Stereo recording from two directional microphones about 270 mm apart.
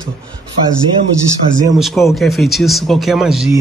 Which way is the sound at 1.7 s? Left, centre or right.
Centre.